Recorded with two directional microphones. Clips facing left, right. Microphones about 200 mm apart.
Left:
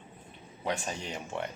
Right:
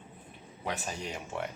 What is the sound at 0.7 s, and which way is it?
Speech, centre (ahead or behind).